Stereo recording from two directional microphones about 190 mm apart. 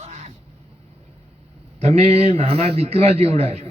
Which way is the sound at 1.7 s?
35° right (ahead or behind).